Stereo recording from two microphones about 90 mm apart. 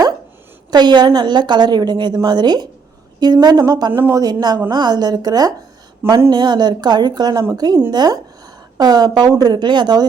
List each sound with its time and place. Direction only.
0.7 s a woman's voice: 55° right (ahead or behind)
3.9 s speech: 25° right (ahead or behind)
4.2 s a woman's voice: 50° right (ahead or behind)